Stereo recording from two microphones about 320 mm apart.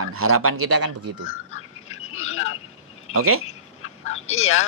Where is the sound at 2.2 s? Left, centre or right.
Left.